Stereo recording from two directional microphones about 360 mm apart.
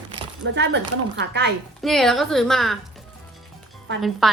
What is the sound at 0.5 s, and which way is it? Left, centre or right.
Speech, right.